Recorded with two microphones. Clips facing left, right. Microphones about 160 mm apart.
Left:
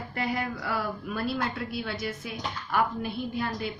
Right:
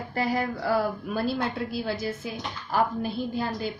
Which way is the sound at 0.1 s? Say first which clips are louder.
Right 4 dB; 35° right (ahead or behind).